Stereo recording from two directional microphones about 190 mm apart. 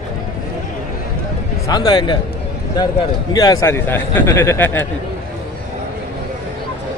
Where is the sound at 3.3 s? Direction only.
15° left (ahead or behind).